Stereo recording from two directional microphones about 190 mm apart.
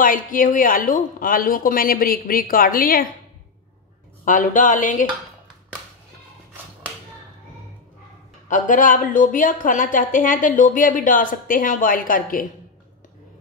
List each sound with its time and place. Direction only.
0.0 s a woman's voice: 45° left (ahead or behind)
4.2 s a woman's voice: 45° left (ahead or behind)
8.5 s a woman's voice: 45° left (ahead or behind)